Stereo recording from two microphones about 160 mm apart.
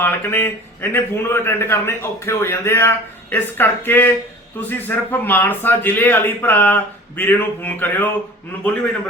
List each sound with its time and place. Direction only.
0.0 s a man's voice: 15° left (ahead or behind)